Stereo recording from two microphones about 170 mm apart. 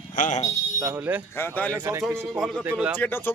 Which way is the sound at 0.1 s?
50° left (ahead or behind).